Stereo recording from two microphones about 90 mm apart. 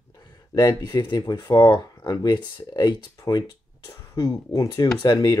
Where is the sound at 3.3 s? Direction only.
50° left (ahead or behind).